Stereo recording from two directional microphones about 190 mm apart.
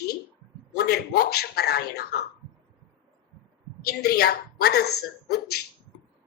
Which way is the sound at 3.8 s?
55° left (ahead or behind).